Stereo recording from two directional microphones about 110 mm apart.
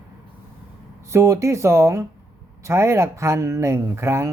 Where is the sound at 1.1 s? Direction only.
25° right (ahead or behind).